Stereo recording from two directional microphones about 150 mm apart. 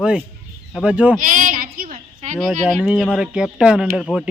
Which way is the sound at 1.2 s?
60° right (ahead or behind).